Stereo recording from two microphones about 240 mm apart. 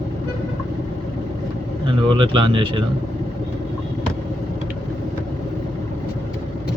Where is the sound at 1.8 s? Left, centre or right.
Right.